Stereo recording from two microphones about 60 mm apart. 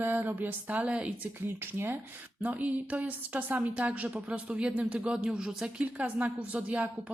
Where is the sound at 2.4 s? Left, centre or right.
Right.